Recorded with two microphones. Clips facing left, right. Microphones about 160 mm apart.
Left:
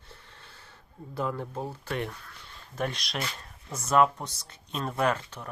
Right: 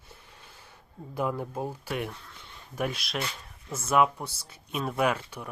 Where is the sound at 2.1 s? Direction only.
20° right (ahead or behind).